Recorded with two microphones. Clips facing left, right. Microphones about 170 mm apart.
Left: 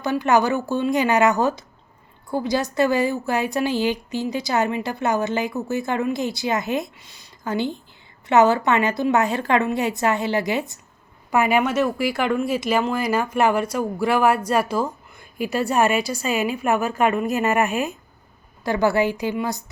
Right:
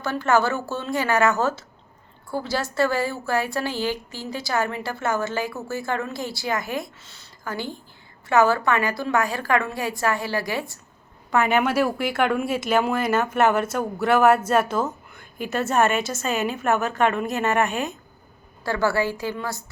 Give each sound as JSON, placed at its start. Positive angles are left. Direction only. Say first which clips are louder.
{"t": 0.0, "sound": "a woman's voice", "louder": "left 2 dB", "side_deg": 15}
{"t": 11.4, "sound": "speech", "louder": "left 1 dB", "side_deg": 5}
{"t": 18.6, "sound": "a woman's voice", "louder": "left 3 dB", "side_deg": 20}